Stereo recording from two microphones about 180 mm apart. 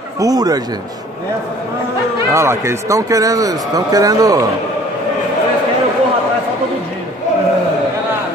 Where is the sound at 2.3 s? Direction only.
15° right (ahead or behind).